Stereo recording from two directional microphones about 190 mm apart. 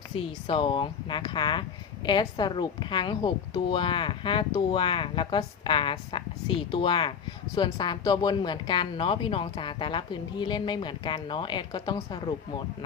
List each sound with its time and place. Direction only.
0.2 s a woman's voice: 30° left (ahead or behind)